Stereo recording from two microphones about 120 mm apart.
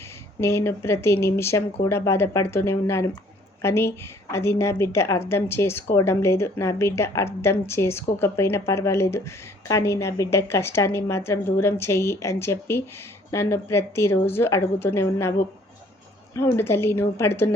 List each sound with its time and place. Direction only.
0.3 s a woman's voice: 20° left (ahead or behind)